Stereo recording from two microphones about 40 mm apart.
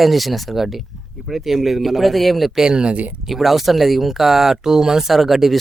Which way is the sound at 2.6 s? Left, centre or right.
Right.